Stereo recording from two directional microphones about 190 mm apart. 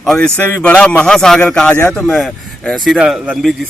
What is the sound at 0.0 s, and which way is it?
Speech, centre (ahead or behind).